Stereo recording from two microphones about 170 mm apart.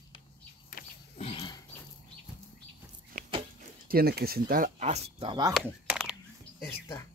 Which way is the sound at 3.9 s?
65° right (ahead or behind).